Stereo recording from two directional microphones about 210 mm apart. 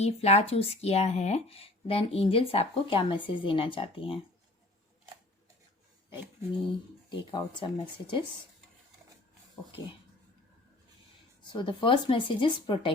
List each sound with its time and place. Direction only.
0.0 s speech: 30° left (ahead or behind)
7.1 s speech: 20° left (ahead or behind)
11.4 s speech: 20° left (ahead or behind)